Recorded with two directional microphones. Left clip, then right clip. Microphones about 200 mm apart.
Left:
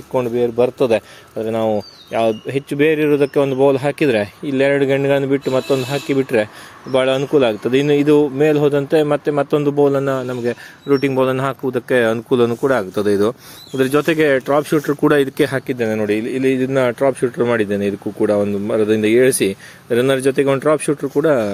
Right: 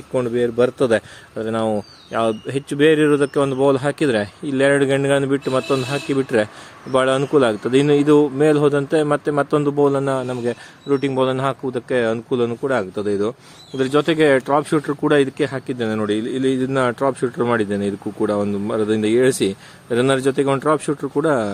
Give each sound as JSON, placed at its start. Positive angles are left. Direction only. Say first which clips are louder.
{"t": 0.1, "sound": "speech", "louder": "left 2 dB", "side_deg": -5}
{"t": 10.8, "sound": "speech", "louder": "left 3 dB", "side_deg": 15}
{"t": 13.7, "sound": "speech", "louder": "left 2 dB", "side_deg": 15}
{"t": 15.0, "sound": "speech", "louder": "left 2 dB", "side_deg": 35}
{"t": 15.6, "sound": "speech", "louder": "left 4 dB", "side_deg": 15}
{"t": 15.9, "sound": "speech", "louder": "left 1 dB", "side_deg": 5}